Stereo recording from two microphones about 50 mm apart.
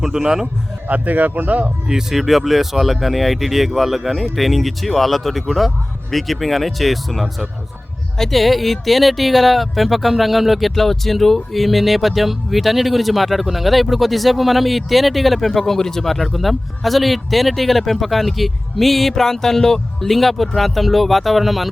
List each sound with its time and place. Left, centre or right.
0.0 s a man's voice: centre
0.9 s speech: right
1.9 s speech: centre